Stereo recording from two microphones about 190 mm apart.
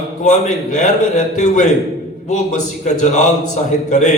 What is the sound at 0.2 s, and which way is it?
A man's voice, 40° left (ahead or behind).